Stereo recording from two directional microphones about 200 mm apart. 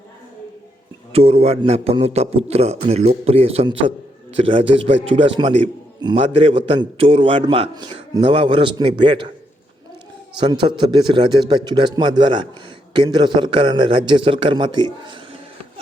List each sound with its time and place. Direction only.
1.1 s a man's voice: 30° right (ahead or behind)
10.3 s a man's voice: 20° right (ahead or behind)